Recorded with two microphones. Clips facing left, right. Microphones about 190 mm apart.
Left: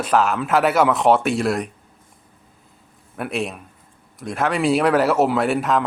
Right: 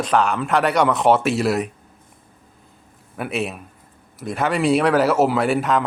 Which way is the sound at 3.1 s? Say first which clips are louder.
Even; centre (ahead or behind).